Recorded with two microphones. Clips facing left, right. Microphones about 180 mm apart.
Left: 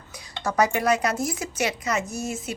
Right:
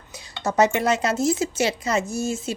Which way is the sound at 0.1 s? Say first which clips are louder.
Right 2 dB; 25° right (ahead or behind).